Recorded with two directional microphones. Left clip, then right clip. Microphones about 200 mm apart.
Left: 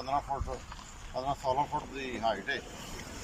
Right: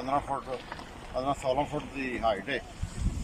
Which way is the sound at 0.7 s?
15° right (ahead or behind).